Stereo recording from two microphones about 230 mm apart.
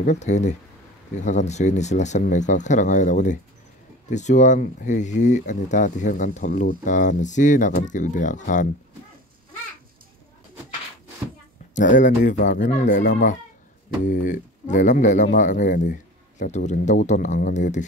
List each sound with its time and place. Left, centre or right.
0.0 s speech: left
11.7 s speech: left